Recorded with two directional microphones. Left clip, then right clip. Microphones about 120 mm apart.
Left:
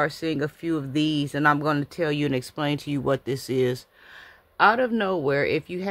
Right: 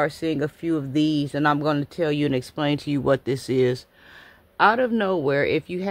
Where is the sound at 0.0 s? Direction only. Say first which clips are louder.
Right 2 dB; 25° right (ahead or behind).